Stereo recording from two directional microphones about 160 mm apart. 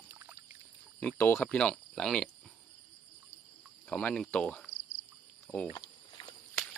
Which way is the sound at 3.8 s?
5° left (ahead or behind).